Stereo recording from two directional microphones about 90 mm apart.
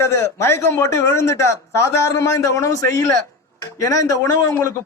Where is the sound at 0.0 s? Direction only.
30° left (ahead or behind).